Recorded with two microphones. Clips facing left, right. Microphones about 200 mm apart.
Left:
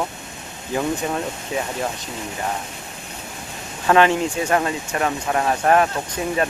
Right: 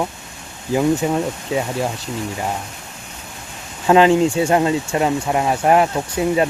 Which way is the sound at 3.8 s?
20° right (ahead or behind).